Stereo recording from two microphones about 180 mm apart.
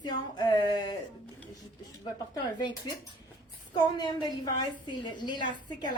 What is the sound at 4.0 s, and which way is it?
A woman's voice, 25° left (ahead or behind).